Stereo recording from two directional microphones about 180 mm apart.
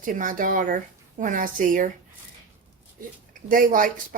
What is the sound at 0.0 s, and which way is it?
Speech, 50° right (ahead or behind).